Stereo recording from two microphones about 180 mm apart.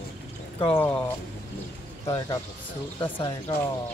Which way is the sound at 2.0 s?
20° left (ahead or behind).